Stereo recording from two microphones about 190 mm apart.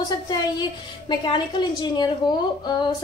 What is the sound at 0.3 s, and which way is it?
A woman's voice, 25° left (ahead or behind).